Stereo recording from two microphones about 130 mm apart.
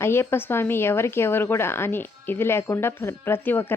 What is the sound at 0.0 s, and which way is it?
A woman's voice, 20° left (ahead or behind).